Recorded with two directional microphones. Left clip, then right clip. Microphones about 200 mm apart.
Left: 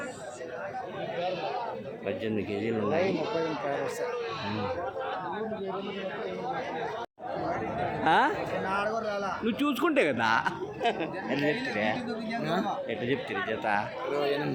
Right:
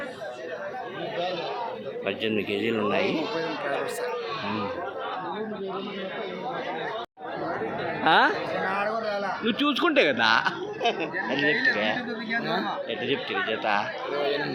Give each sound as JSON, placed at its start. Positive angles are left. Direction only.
{"t": 2.0, "sound": "a man's voice", "side_deg": 0}
{"t": 8.0, "sound": "speech", "side_deg": 10}
{"t": 8.7, "sound": "a sound", "side_deg": 20}
{"t": 9.4, "sound": "speech", "side_deg": 5}
{"t": 13.3, "sound": "speech", "side_deg": 10}